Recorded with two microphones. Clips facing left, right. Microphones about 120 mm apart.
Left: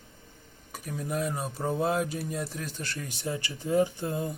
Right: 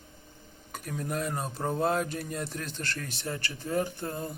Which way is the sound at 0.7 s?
5° left (ahead or behind).